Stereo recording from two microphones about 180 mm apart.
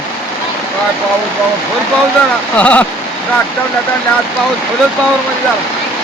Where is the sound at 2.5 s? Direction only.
10° left (ahead or behind).